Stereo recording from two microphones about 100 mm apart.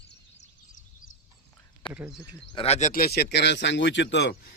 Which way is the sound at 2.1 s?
15° right (ahead or behind).